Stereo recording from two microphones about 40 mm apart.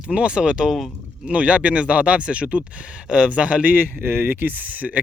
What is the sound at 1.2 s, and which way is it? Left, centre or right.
Speech, right.